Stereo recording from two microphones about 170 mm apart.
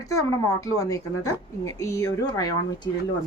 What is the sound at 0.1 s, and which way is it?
A woman's voice, 20° left (ahead or behind).